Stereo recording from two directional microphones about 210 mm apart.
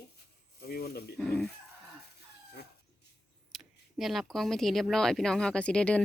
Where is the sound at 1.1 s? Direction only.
Centre (ahead or behind).